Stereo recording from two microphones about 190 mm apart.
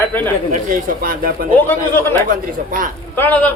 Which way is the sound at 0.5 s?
45° right (ahead or behind).